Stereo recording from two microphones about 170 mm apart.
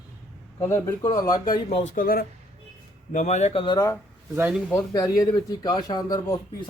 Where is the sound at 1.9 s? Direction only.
60° left (ahead or behind).